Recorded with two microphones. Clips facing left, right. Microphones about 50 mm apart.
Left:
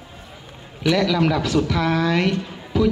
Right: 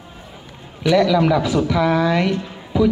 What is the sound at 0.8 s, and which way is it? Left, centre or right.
A woman's voice, centre.